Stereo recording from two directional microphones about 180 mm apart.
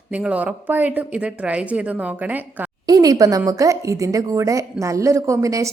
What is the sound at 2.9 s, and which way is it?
A woman's voice, 20° right (ahead or behind).